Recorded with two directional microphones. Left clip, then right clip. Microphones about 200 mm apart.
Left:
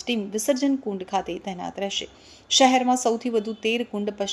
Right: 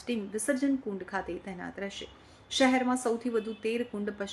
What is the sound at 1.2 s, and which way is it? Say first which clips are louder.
Speech: left 7 dB; 10° right (ahead or behind).